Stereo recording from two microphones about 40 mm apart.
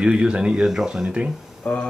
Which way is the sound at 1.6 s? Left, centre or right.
Left.